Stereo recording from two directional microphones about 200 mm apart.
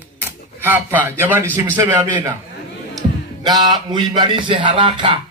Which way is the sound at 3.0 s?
20° right (ahead or behind).